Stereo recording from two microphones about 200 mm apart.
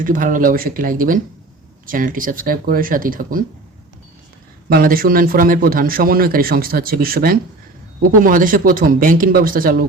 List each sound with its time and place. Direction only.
0.0 s a man's voice: 40° right (ahead or behind)
4.7 s a man's voice: 45° right (ahead or behind)